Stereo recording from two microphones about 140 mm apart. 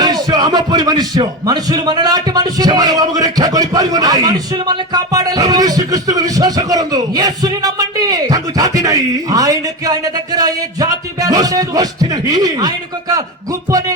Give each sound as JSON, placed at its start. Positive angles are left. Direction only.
{"t": 0.0, "sound": "speech", "side_deg": -30}